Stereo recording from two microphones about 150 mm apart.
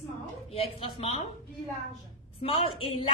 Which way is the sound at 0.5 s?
40° left (ahead or behind).